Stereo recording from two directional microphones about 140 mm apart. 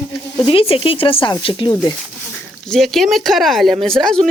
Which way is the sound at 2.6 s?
5° left (ahead or behind).